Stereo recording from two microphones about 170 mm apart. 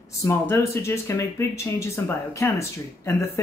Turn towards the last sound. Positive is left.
turn(degrees=15)  # may be behind; listen again after turning